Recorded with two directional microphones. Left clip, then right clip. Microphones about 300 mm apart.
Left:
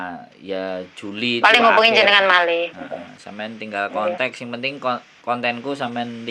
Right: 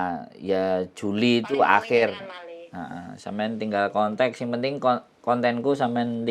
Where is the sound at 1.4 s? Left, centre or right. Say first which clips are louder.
Left 10 dB; left.